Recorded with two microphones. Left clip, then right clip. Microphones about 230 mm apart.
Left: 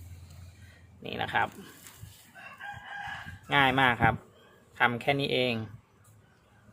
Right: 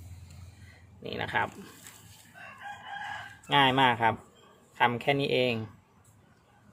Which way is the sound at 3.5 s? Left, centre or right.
Centre.